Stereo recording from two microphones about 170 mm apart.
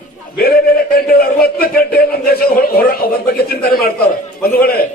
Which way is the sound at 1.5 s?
60° left (ahead or behind).